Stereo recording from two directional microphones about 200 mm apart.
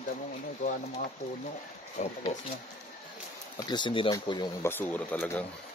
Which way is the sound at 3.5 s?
20° left (ahead or behind).